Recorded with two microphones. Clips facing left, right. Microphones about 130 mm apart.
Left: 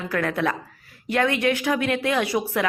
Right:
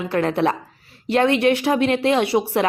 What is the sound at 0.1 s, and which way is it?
A woman's voice, 25° right (ahead or behind).